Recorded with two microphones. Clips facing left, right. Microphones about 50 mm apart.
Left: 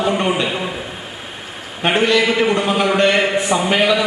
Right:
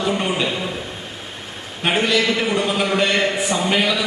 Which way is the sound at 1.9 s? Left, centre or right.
Centre.